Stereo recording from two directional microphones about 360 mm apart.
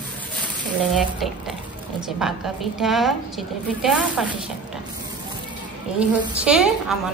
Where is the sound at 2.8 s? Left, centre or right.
Centre.